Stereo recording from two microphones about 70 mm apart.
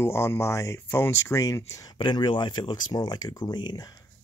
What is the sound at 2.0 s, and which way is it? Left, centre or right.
Speech, left.